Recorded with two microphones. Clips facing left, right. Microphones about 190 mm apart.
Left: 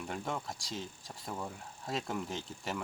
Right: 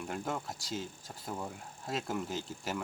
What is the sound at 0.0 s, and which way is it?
Speech, centre (ahead or behind).